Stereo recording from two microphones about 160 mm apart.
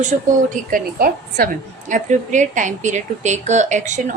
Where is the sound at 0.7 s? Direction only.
70° right (ahead or behind).